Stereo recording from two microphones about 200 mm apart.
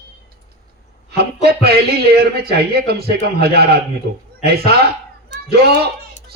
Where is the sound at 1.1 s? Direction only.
55° right (ahead or behind).